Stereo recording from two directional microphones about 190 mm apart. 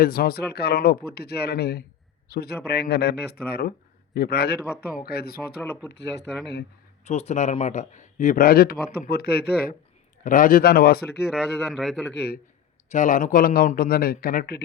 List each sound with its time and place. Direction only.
0.0 s a man's voice: 50° left (ahead or behind)
7.0 s a man's voice: 35° left (ahead or behind); by 9.7 s 55° left (ahead or behind)
10.2 s a man's voice: 45° left (ahead or behind)
11.3 s speech: centre (ahead or behind)
12.1 s a man's voice: 60° left (ahead or behind)
12.9 s a man's voice: 40° left (ahead or behind)